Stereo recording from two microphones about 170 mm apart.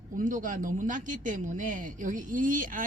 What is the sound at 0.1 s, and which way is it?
A man's voice, 50° right (ahead or behind).